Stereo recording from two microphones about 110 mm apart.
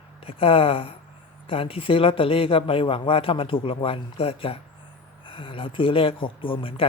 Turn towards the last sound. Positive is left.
turn(degrees=55)  # may be behind; listen again after turning